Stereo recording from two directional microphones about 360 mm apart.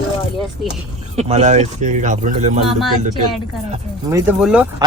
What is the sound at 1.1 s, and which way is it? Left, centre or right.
Speech, centre.